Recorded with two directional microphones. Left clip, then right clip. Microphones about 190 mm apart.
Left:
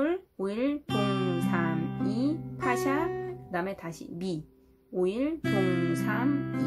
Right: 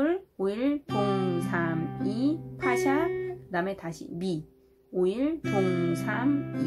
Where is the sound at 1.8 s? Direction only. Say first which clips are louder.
Even; 30° left (ahead or behind).